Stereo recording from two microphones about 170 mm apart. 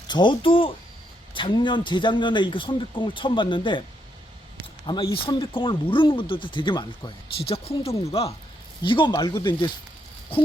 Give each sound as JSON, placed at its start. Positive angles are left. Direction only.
{"t": 0.1, "sound": "speech", "side_deg": 25}
{"t": 5.1, "sound": "speech", "side_deg": 30}